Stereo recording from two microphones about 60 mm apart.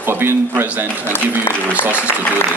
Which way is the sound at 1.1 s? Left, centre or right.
Left.